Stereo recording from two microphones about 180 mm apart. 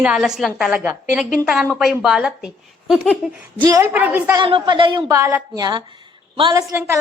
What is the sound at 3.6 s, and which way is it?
Speech, 20° right (ahead or behind).